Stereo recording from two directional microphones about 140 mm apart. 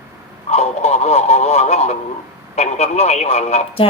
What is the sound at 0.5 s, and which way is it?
Speech, 50° left (ahead or behind).